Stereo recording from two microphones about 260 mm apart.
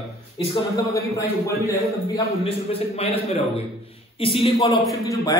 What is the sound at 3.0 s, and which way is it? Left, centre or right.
A man's voice, left.